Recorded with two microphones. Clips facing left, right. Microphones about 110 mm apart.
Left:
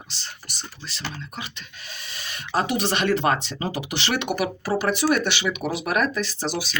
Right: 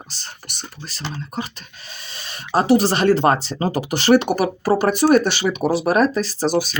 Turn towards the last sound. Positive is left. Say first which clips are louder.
# right 8 dB
turn(degrees=-45)  # may be behind; listen again after turning